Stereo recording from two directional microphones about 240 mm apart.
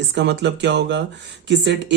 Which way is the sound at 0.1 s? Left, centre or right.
Right.